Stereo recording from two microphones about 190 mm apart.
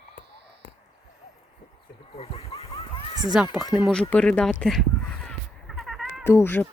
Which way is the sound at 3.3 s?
Centre (ahead or behind).